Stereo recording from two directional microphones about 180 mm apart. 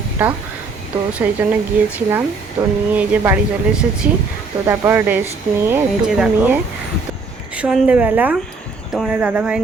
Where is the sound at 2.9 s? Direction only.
10° right (ahead or behind).